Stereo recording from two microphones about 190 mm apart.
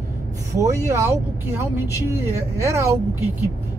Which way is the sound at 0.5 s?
15° right (ahead or behind).